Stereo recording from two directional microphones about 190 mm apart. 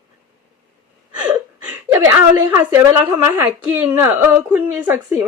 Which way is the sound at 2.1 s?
15° right (ahead or behind).